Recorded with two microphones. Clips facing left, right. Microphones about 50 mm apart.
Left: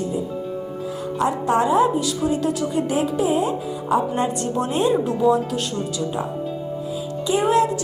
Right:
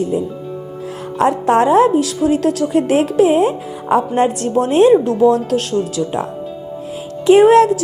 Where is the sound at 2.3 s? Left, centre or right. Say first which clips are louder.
Right 7 dB; right.